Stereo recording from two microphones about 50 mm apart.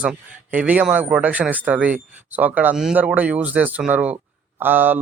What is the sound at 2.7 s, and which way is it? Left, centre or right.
Speech, centre.